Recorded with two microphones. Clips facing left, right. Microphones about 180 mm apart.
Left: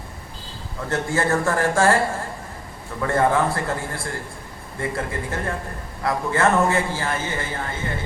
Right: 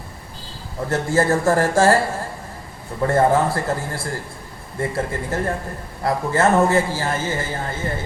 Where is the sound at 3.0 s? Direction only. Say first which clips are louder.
Right 3 dB; 35° right (ahead or behind).